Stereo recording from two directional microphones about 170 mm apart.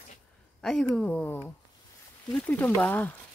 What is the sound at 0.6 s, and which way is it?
Speech, 5° left (ahead or behind).